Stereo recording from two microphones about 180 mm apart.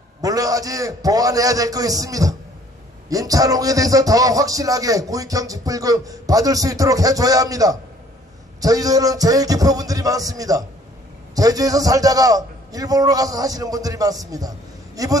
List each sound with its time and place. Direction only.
0.2 s speech: 20° right (ahead or behind)